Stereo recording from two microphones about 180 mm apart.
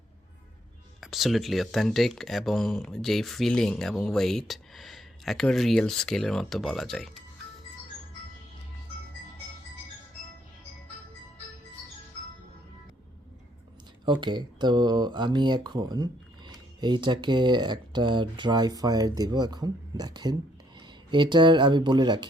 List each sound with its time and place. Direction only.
1.0 s speech: centre (ahead or behind)
14.0 s speech: 25° right (ahead or behind)